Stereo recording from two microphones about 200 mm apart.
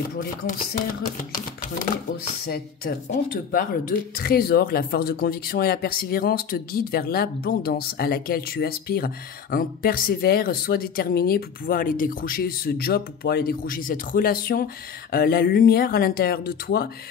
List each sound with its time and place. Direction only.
2.4 s speech: 50° left (ahead or behind)